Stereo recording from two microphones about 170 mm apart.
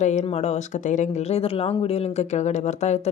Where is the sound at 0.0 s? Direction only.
45° left (ahead or behind).